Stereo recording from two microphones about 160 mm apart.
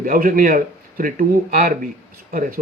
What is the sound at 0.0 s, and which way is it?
A man's voice, 60° right (ahead or behind).